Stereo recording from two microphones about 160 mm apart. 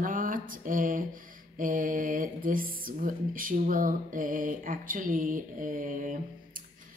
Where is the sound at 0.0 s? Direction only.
55° right (ahead or behind).